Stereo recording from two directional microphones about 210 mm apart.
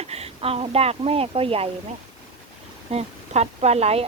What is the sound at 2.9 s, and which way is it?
Speech, 30° right (ahead or behind).